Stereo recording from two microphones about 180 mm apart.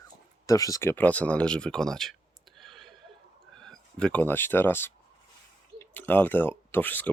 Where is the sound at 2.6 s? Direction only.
Centre (ahead or behind).